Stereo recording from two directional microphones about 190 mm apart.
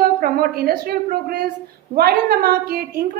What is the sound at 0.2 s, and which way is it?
A woman's voice, 50° right (ahead or behind).